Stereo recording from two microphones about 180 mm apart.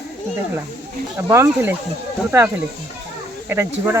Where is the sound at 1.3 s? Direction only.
15° right (ahead or behind).